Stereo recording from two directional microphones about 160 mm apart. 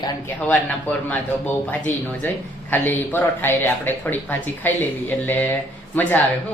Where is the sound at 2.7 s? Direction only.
10° left (ahead or behind).